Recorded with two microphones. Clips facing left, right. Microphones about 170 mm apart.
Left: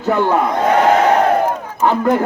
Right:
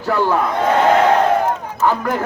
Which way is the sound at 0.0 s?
20° left (ahead or behind).